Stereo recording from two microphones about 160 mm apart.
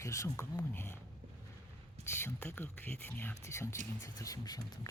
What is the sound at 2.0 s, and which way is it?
Speech, 15° left (ahead or behind).